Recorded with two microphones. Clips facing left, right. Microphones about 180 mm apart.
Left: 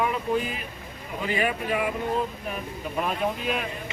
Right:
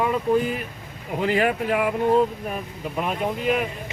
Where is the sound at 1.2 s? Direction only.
75° right (ahead or behind).